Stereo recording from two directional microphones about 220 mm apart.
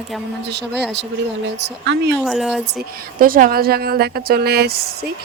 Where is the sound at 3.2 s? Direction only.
40° right (ahead or behind).